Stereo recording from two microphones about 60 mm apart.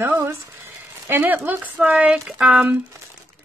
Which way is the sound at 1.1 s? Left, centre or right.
Right.